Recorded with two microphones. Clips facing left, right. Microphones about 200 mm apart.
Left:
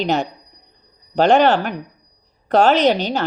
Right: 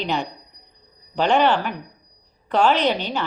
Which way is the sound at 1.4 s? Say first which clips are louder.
Left 4 dB; 75° left (ahead or behind).